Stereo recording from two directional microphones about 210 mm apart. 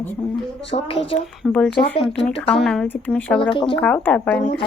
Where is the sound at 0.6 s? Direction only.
25° left (ahead or behind).